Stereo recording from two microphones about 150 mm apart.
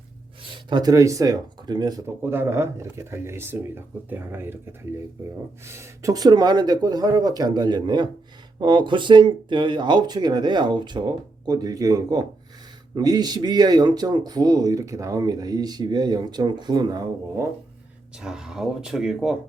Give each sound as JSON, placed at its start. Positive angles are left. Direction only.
{"t": 0.4, "sound": "speech", "side_deg": -35}
{"t": 2.0, "sound": "speech", "side_deg": -15}
{"t": 18.2, "sound": "speech", "side_deg": -5}